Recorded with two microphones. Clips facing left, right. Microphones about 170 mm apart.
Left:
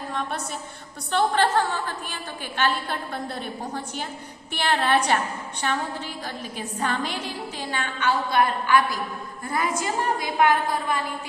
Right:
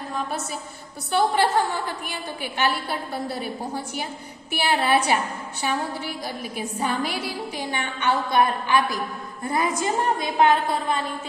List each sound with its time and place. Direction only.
0.1 s a woman's voice: 5° right (ahead or behind); by 11.0 s 25° right (ahead or behind)